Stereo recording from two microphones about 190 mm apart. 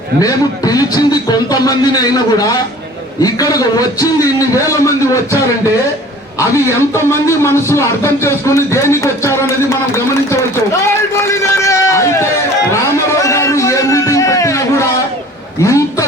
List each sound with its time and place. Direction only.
0.2 s a man's voice: 20° left (ahead or behind)
6.7 s speech: 15° left (ahead or behind)
12.7 s a sound: 15° left (ahead or behind)